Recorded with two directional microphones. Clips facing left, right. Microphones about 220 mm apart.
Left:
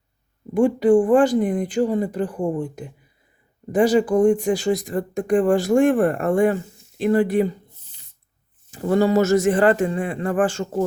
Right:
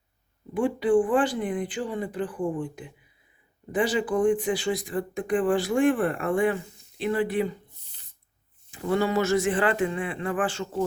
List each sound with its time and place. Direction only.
0.5 s speech: 45° left (ahead or behind)
8.7 s speech: 40° left (ahead or behind)